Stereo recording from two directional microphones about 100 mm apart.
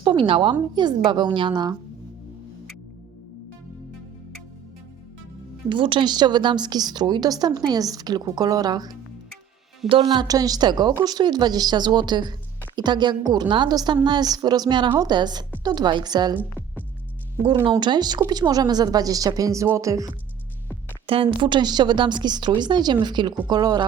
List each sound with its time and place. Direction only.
0.0 s a woman's voice: 50° right (ahead or behind)
5.6 s a woman's voice: 55° right (ahead or behind); by 9.0 s 40° right (ahead or behind)
10.1 s a woman's voice: 40° right (ahead or behind)
17.4 s speech: 60° right (ahead or behind); by 20.1 s 35° right (ahead or behind)
21.1 s a woman's voice: 60° right (ahead or behind); by 23.8 s 45° right (ahead or behind)